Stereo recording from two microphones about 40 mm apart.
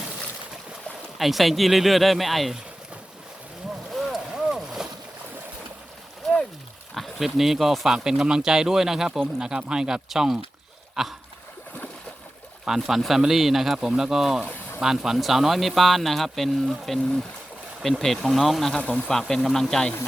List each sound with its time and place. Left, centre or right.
1.2 s speech: centre
4.1 s boat: centre
6.9 s a sound: centre
7.3 s speech: centre
12.6 s speech: centre
18.0 s speech: centre
18.8 s speech: left
19.0 s speech: centre